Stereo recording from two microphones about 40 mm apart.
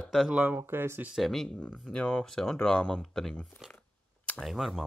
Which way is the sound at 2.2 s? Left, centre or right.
Centre.